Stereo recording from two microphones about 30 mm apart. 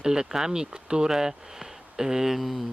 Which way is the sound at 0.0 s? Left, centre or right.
Right.